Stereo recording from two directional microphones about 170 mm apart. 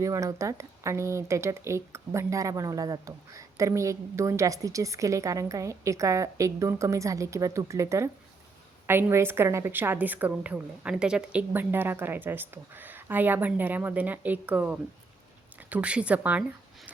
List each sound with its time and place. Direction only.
0.0 s speech: 20° right (ahead or behind)